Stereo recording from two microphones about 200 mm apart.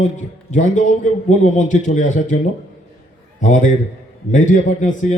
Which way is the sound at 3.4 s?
40° left (ahead or behind).